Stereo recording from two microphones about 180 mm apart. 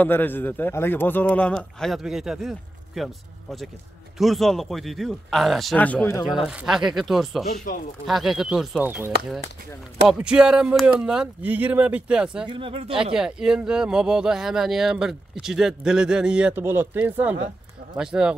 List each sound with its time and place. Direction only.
0.0 s a man's voice: 10° left (ahead or behind)
6.2 s speech: 5° right (ahead or behind)
7.5 s speech: 50° left (ahead or behind)
8.1 s speech: centre (ahead or behind)
12.4 s speech: 30° right (ahead or behind)
13.1 s speech: 5° right (ahead or behind)